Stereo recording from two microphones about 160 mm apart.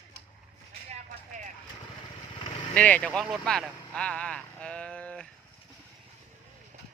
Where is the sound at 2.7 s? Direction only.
10° left (ahead or behind).